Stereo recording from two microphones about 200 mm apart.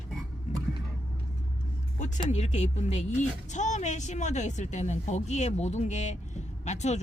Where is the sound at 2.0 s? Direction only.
35° left (ahead or behind).